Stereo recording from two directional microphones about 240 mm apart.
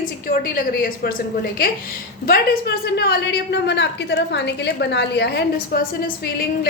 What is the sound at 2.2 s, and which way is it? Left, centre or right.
A woman's voice, left.